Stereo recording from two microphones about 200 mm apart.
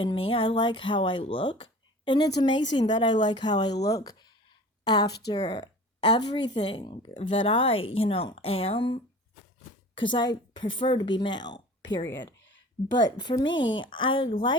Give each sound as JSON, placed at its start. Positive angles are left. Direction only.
{"t": 0.0, "sound": "a woman's voice", "side_deg": 25}
{"t": 10.1, "sound": "speech", "side_deg": 20}
{"t": 12.1, "sound": "a sound", "side_deg": 65}
{"t": 12.9, "sound": "speech", "side_deg": 20}